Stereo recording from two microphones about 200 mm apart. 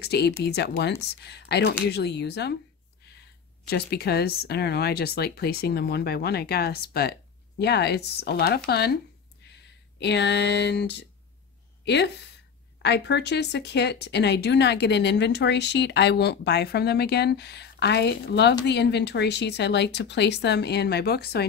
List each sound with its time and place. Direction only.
0.0 s speech: 55° left (ahead or behind)
3.6 s speech: 50° left (ahead or behind)